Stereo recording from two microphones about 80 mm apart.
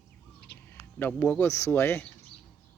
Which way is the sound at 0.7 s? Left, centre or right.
Left.